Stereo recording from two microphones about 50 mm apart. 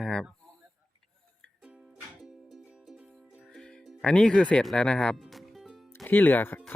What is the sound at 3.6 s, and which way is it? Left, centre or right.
Music, centre.